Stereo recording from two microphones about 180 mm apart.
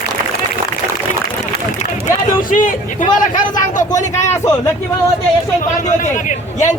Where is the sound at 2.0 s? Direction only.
45° left (ahead or behind).